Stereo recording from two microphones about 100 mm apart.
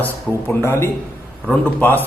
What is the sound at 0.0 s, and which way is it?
Speech, 25° left (ahead or behind).